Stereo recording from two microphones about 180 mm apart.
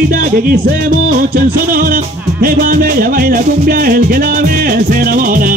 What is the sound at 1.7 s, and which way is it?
Music, 55° right (ahead or behind).